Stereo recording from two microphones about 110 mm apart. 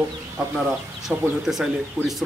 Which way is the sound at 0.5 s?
5° right (ahead or behind).